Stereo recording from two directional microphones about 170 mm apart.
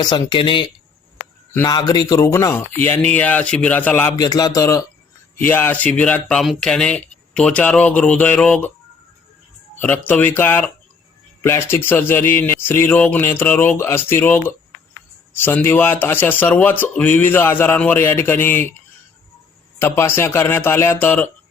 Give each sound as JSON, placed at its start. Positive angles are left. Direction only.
{"t": 0.0, "sound": "speech", "side_deg": 25}
{"t": 4.2, "sound": "speech", "side_deg": 20}
{"t": 9.7, "sound": "speech", "side_deg": 10}
{"t": 19.8, "sound": "speech", "side_deg": 15}